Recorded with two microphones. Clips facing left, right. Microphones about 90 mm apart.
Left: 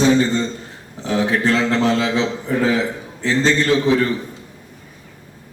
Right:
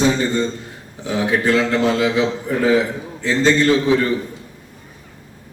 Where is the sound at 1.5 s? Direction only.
15° right (ahead or behind).